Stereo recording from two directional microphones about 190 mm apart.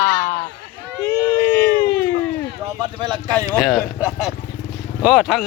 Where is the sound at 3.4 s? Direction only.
Centre (ahead or behind).